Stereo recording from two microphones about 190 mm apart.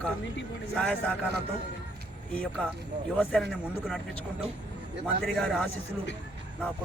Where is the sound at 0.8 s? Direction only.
5° left (ahead or behind).